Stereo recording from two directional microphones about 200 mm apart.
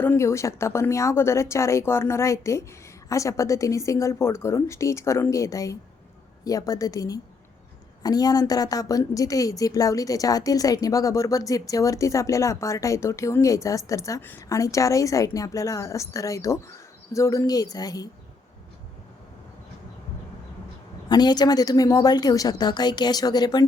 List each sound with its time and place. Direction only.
0.0 s a woman's voice: 10° left (ahead or behind)
21.1 s a woman's voice: 20° left (ahead or behind)